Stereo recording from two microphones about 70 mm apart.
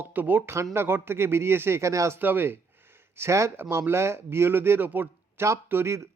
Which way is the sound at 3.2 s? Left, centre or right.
Right.